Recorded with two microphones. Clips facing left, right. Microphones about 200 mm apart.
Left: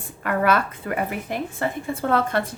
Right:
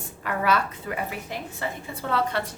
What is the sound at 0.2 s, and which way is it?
A woman's voice, 55° left (ahead or behind).